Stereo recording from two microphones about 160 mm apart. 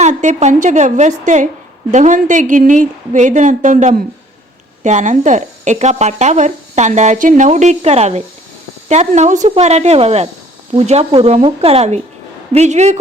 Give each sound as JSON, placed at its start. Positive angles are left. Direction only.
{"t": 0.0, "sound": "speech", "side_deg": -50}